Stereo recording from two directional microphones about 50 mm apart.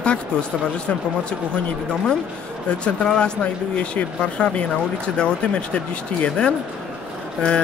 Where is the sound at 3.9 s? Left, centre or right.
Left.